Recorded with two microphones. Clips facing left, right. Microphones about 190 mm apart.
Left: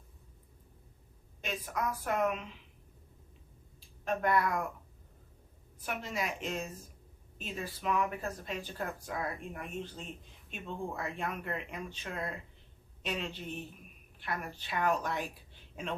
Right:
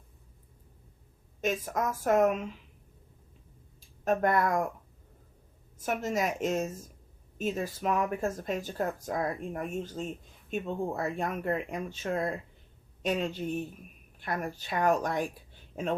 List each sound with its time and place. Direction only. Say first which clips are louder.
1.4 s speech: right 6 dB; 45° right (ahead or behind)
3.8 s speech: right 7 dB; 45° right (ahead or behind)
5.8 s speech: right 7 dB; 45° right (ahead or behind)